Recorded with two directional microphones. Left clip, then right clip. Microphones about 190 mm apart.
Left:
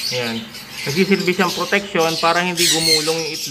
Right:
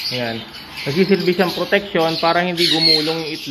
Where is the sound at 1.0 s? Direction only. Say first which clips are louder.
Right 1 dB; 15° right (ahead or behind).